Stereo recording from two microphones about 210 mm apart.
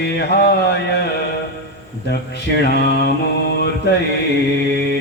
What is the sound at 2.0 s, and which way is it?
Mantra, 50° left (ahead or behind).